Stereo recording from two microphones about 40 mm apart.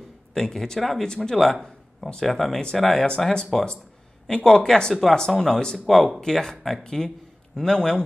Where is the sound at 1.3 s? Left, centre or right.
Centre.